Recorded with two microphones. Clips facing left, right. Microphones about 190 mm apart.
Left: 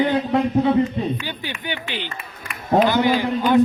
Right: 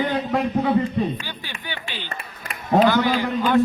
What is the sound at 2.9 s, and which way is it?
Speech, 20° left (ahead or behind).